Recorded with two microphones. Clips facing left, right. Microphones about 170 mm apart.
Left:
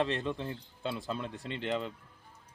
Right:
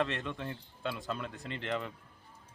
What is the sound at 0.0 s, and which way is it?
Speech, 35° left (ahead or behind).